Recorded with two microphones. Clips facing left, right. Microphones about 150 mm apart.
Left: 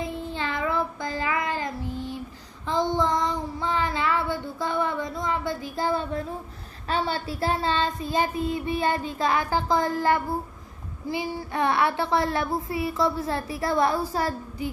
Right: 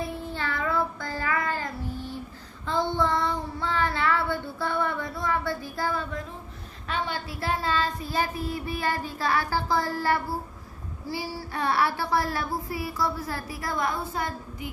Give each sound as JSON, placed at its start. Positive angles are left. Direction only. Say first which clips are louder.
{"t": 0.0, "sound": "child singing", "louder": "left 2 dB", "side_deg": 20}